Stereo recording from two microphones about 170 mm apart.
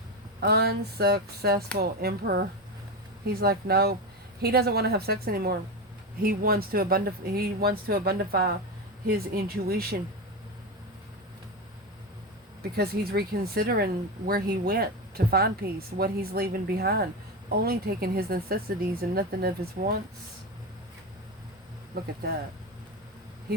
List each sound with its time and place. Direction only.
0.3 s speech: 70° right (ahead or behind)
12.7 s speech: 65° right (ahead or behind)
21.9 s speech: 65° right (ahead or behind)